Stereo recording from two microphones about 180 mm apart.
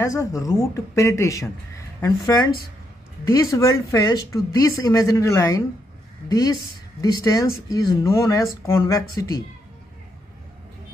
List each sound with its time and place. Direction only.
0.0 s speech: 15° left (ahead or behind)